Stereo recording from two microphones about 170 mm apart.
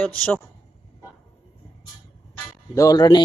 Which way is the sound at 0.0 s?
10° left (ahead or behind).